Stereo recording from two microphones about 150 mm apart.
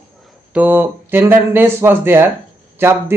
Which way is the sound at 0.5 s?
15° right (ahead or behind).